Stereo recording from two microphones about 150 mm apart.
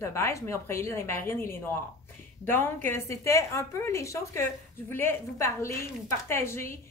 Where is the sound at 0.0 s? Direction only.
15° left (ahead or behind).